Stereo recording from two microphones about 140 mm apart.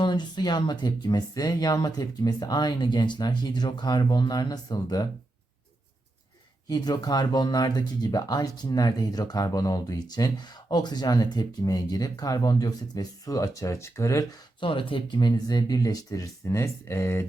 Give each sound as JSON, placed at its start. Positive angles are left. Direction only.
{"t": 0.0, "sound": "speech", "side_deg": 35}
{"t": 6.7, "sound": "speech", "side_deg": 30}
{"t": 14.6, "sound": "speech", "side_deg": 40}